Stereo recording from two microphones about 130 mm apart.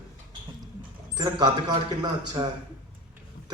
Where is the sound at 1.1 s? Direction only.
30° right (ahead or behind).